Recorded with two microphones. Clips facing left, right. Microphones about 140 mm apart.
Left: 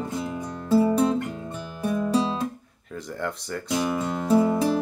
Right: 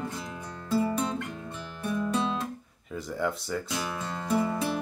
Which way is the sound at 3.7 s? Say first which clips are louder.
Left 8 dB; 15° left (ahead or behind).